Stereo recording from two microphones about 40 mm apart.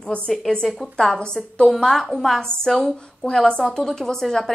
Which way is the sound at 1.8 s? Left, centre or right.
Centre.